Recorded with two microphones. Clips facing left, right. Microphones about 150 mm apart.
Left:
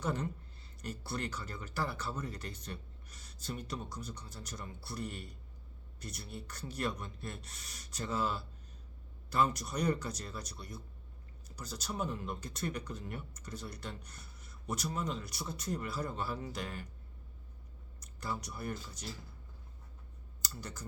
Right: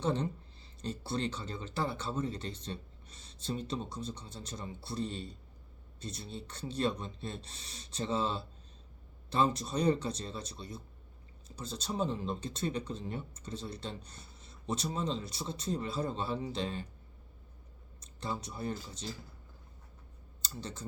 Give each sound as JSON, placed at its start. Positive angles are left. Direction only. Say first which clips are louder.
{"t": 0.0, "sound": "speech", "louder": "right 4 dB", "side_deg": -25}
{"t": 18.0, "sound": "speech", "louder": "right 2 dB", "side_deg": -25}
{"t": 20.6, "sound": "speech", "louder": "right 4 dB", "side_deg": -25}